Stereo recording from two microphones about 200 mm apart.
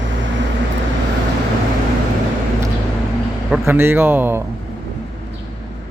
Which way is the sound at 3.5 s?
10° right (ahead or behind).